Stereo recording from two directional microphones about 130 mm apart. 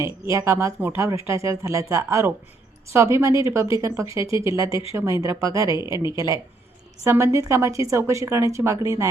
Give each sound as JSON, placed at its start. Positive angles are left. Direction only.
{"t": 0.0, "sound": "speech", "side_deg": -20}